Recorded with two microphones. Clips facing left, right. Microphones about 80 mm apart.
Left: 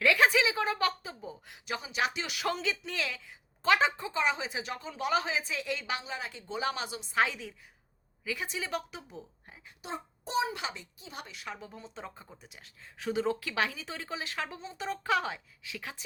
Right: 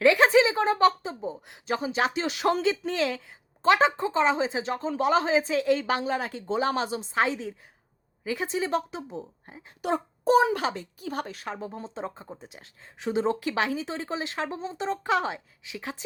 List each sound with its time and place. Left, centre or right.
0.0 s a sound: right
1.7 s speech: right
10.5 s a woman's voice: right